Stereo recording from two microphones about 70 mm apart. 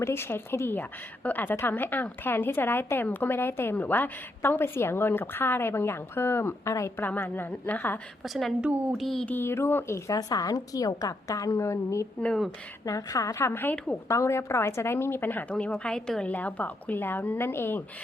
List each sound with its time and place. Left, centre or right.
0.0 s speech: left
7.0 s a woman's voice: left
8.2 s a woman's voice: centre
8.6 s speech: centre
9.0 s a woman's voice: centre
9.4 s speech: left
10.1 s a woman's voice: left
12.8 s a woman's voice: left
13.5 s speech: left
15.8 s a woman's voice: centre
16.2 s a woman's voice: left